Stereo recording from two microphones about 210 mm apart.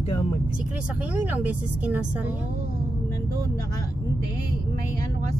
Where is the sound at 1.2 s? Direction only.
5° right (ahead or behind).